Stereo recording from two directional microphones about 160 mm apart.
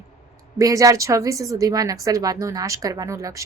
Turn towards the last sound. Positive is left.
turn(degrees=-20)  # may be behind; listen again after turning